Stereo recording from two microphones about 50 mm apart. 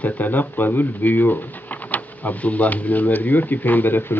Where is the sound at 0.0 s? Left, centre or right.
Left.